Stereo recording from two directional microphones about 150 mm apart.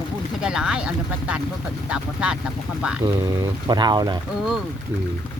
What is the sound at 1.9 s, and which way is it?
Speech, 5° right (ahead or behind).